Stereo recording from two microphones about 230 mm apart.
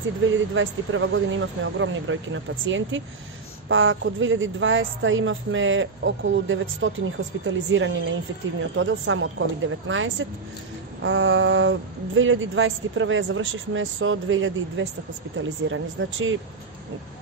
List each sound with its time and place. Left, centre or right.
0.2 s a woman's voice: right